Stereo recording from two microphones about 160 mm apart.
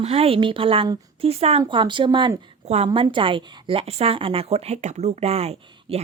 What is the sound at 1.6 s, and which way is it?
Speech, 30° right (ahead or behind).